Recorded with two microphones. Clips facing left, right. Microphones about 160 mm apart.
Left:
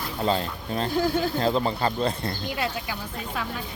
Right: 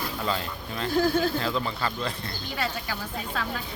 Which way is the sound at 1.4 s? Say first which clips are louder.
Left 5 dB; 35° left (ahead or behind).